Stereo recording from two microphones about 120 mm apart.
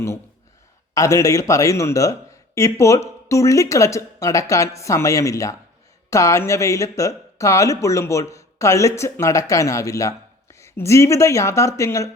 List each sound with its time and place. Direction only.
0.9 s speech: 25° left (ahead or behind)